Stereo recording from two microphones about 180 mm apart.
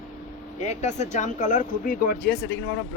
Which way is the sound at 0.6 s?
40° left (ahead or behind).